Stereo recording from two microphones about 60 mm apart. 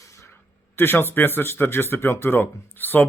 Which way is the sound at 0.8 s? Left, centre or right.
Left.